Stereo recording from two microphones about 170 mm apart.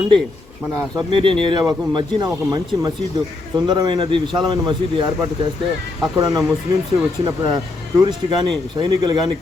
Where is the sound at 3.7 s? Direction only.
25° right (ahead or behind).